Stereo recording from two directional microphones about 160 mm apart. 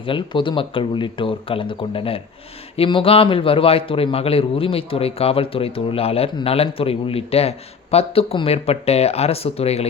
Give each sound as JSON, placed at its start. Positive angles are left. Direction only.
{"t": 0.0, "sound": "a man's voice", "side_deg": 30}